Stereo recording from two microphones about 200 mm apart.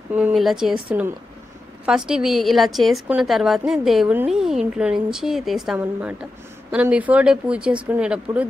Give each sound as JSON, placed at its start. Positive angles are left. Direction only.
{"t": 0.1, "sound": "a woman's voice", "side_deg": -5}